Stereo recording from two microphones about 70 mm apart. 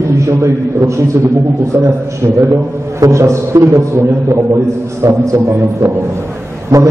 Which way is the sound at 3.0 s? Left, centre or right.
Right.